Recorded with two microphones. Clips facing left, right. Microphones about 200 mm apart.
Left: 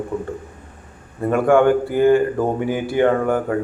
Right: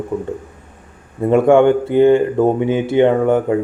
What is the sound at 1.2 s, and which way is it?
Speech, 20° right (ahead or behind).